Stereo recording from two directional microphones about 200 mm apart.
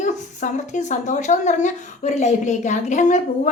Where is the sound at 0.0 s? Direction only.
35° left (ahead or behind).